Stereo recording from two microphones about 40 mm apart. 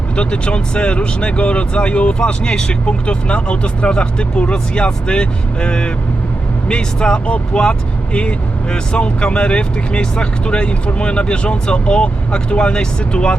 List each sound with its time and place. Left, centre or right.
0.2 s speech: left